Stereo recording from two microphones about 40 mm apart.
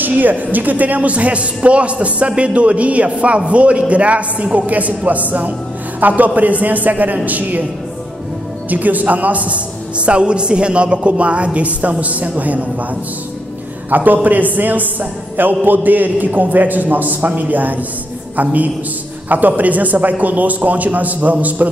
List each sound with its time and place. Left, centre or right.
0.0 s a man's voice: right
8.6 s a man's voice: right
13.8 s a man's voice: right